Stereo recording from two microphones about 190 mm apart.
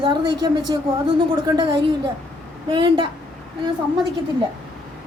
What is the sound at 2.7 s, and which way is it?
Speech, 25° right (ahead or behind).